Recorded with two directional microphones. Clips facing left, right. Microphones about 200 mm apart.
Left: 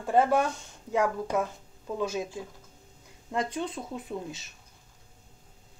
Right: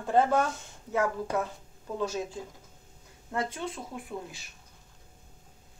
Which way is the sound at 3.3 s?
20° left (ahead or behind).